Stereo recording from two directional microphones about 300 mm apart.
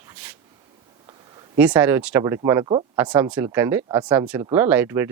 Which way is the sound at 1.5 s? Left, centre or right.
Centre.